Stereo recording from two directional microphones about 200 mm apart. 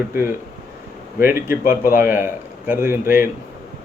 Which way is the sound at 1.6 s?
45° left (ahead or behind).